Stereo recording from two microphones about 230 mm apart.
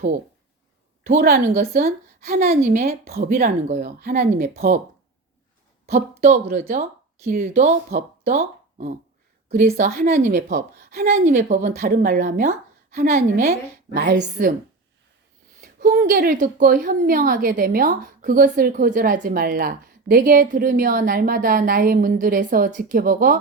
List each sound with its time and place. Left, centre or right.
1.0 s a woman's voice: right
5.8 s a woman's voice: right
15.6 s a woman's voice: right